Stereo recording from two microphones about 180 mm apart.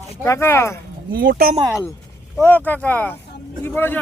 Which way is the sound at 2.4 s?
10° left (ahead or behind).